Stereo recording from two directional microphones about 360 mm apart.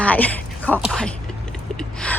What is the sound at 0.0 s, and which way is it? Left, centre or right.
Speech, centre.